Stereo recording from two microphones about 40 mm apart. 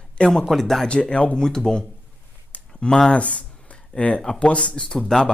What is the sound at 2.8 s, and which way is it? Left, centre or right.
Speech, centre.